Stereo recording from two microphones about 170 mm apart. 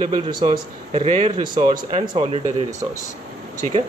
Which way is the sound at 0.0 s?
25° right (ahead or behind).